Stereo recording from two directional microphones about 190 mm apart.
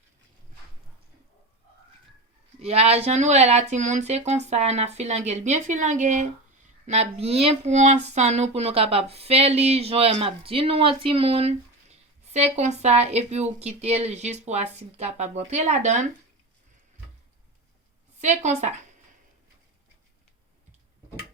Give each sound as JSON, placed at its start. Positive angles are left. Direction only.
{"t": 2.6, "sound": "speech", "side_deg": -35}
{"t": 18.2, "sound": "speech", "side_deg": -35}